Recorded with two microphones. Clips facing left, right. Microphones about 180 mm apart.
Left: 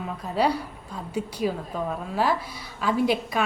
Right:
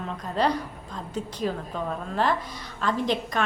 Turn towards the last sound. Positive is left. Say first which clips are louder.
# left 3 dB
turn(degrees=10)  # may be behind; listen again after turning